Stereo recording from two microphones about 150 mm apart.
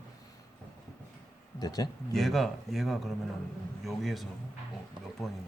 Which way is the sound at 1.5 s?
25° left (ahead or behind).